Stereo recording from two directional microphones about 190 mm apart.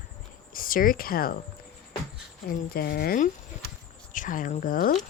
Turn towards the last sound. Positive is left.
turn(degrees=50)  # may be behind; listen again after turning